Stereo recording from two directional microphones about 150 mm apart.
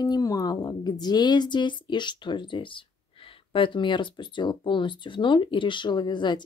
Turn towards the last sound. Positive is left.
turn(degrees=30)  # may be behind; listen again after turning